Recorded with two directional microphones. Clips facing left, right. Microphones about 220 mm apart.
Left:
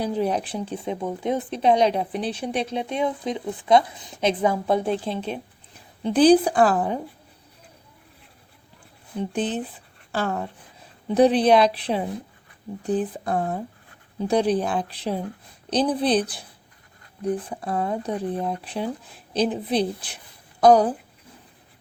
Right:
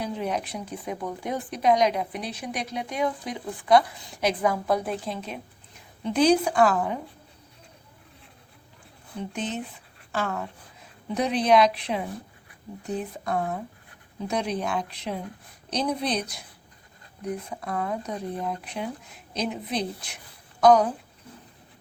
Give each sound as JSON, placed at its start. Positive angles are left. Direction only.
{"t": 0.0, "sound": "speech", "side_deg": 35}
{"t": 9.3, "sound": "speech", "side_deg": 35}